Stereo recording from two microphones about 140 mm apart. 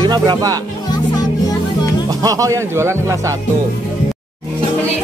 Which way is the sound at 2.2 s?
25° right (ahead or behind).